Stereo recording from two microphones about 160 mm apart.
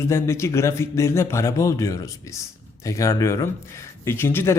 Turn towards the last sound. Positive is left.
turn(degrees=15)  # may be behind; listen again after turning